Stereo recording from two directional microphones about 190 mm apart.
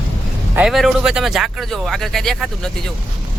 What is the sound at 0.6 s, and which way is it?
Speech, centre (ahead or behind).